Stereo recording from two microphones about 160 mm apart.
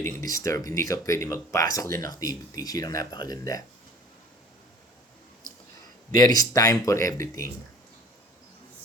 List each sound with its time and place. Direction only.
0.0 s speech: 20° left (ahead or behind)
6.1 s speech: 25° left (ahead or behind)